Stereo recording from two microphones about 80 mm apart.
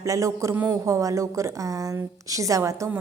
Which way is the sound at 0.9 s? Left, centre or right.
Right.